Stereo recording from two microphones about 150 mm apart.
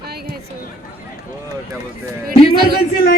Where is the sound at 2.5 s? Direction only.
90° right.